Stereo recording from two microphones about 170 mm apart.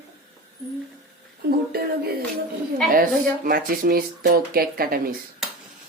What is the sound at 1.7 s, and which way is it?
Speech, 65° right (ahead or behind).